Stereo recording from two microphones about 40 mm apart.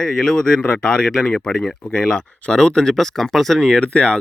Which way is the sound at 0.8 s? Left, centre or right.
Left.